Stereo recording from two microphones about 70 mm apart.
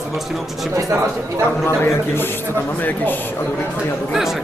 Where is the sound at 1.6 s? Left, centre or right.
Left.